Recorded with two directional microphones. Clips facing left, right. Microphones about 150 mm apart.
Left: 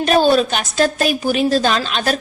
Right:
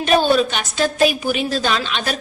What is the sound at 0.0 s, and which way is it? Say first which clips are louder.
A woman's voice: left 2 dB; 40° left (ahead or behind).